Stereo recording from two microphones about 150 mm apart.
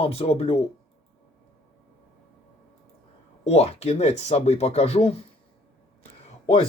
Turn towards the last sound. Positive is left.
turn(degrees=40)  # may be behind; listen again after turning